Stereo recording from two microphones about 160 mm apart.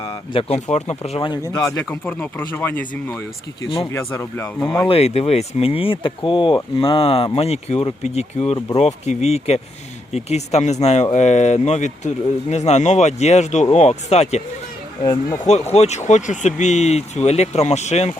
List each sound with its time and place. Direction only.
0.0 s speech: 35° left (ahead or behind)
1.3 s speech: 25° left (ahead or behind)
3.6 s speech: 35° left (ahead or behind)
3.9 s speech: 15° left (ahead or behind)
4.9 s speech: 40° left (ahead or behind)
15.0 s speech: 20° left (ahead or behind)
15.4 s speech: 45° left (ahead or behind)